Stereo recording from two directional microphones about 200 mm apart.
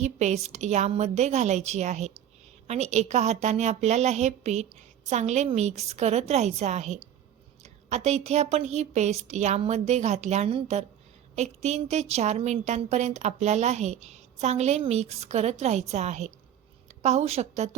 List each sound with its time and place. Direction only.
0.0 s a woman's voice: 35° right (ahead or behind)